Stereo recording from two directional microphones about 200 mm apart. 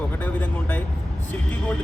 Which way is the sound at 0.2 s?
10° left (ahead or behind).